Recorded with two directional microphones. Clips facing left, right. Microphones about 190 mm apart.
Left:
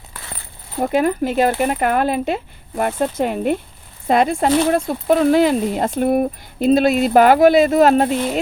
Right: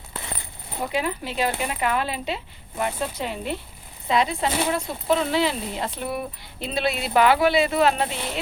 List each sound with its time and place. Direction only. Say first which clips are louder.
0.8 s speech: left 10 dB; 50° left (ahead or behind)